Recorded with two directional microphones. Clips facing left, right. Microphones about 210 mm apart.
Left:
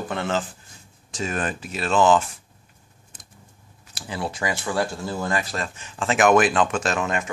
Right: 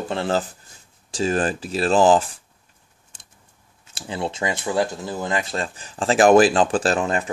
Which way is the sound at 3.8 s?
25° right (ahead or behind).